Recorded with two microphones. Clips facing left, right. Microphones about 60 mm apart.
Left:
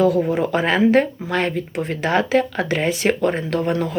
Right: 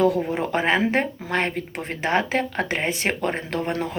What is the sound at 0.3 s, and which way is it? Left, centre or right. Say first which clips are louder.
Speech: left 3 dB; right.